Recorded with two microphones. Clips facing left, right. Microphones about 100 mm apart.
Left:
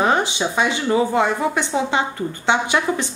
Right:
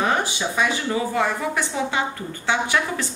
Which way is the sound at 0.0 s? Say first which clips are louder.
Left 4 dB; 25° left (ahead or behind).